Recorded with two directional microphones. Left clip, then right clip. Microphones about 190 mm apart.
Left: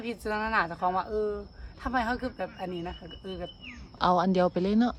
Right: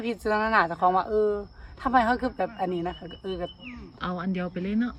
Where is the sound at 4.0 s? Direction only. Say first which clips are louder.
Left 9 dB; 20° left (ahead or behind).